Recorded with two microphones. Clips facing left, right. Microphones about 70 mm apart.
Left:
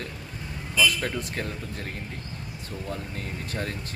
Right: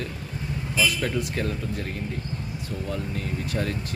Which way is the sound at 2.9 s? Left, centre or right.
Left.